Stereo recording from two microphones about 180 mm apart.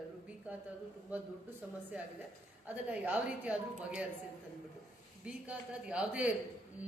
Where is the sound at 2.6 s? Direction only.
10° right (ahead or behind).